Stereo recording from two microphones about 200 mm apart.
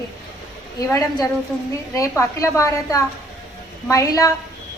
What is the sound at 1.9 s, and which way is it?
A woman's voice, 15° left (ahead or behind).